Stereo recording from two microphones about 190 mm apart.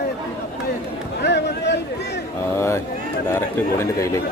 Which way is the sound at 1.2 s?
65° left (ahead or behind).